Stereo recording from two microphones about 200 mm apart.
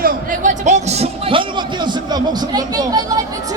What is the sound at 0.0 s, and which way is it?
A man's voice, 40° right (ahead or behind).